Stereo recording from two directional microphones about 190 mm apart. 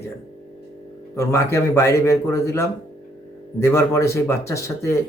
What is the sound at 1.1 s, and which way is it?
A man's voice, 15° left (ahead or behind).